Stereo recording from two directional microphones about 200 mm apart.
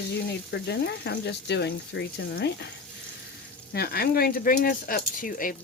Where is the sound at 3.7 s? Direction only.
50° left (ahead or behind).